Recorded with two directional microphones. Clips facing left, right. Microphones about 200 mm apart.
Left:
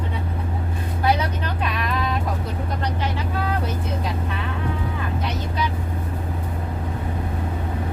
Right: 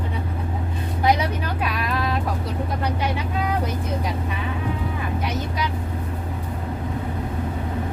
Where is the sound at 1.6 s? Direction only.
Centre (ahead or behind).